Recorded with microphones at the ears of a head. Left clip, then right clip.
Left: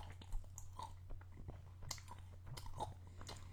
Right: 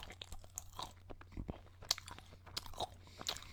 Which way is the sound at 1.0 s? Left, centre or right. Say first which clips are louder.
Right 10 dB; right.